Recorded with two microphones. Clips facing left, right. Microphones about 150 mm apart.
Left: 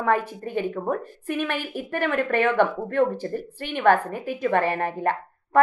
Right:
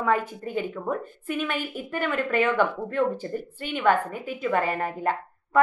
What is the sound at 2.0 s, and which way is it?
Speech, 55° left (ahead or behind).